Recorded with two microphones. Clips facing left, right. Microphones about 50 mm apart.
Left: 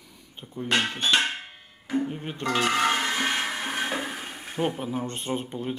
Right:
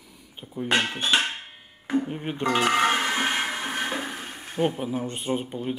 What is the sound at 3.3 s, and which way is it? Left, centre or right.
Blender, centre.